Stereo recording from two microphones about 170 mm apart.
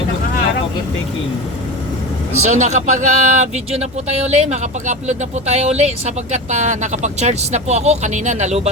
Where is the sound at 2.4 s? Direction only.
45° right (ahead or behind).